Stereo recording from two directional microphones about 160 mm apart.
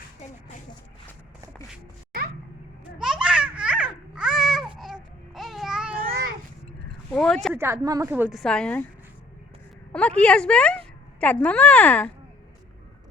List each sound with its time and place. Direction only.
3.0 s babbling: 5° right (ahead or behind)
5.3 s a sound: centre (ahead or behind)
6.0 s babbling: 70° right (ahead or behind)
7.1 s speech: 5° left (ahead or behind)
7.5 s speech: 15° right (ahead or behind)
8.3 s speech: 5° left (ahead or behind)
9.9 s a woman's voice: 10° left (ahead or behind)